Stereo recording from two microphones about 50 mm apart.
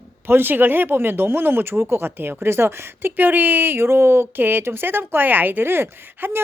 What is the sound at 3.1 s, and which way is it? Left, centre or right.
Speech, right.